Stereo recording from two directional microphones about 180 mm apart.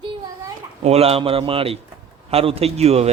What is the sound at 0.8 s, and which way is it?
Speech, 35° right (ahead or behind).